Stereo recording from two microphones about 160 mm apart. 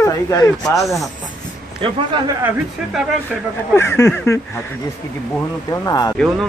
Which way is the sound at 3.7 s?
15° left (ahead or behind).